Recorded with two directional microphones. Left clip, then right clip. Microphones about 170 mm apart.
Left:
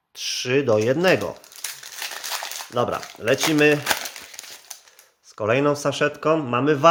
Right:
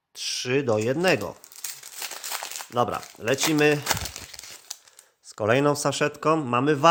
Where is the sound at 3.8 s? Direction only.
15° right (ahead or behind).